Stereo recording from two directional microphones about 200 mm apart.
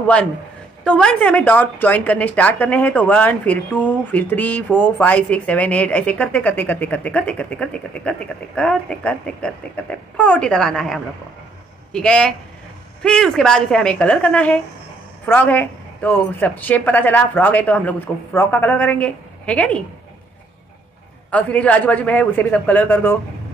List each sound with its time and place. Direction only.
0.0 s a woman's voice: 5° left (ahead or behind)
21.3 s a woman's voice: 5° left (ahead or behind)